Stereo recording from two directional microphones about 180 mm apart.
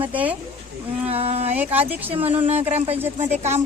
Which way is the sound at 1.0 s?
35° right (ahead or behind).